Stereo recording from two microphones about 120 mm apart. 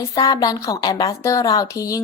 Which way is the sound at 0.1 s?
30° left (ahead or behind).